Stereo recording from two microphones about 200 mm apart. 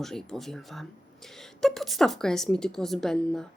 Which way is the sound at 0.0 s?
Centre (ahead or behind).